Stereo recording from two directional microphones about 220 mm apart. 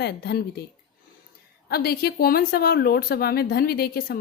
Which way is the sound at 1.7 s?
45° left (ahead or behind).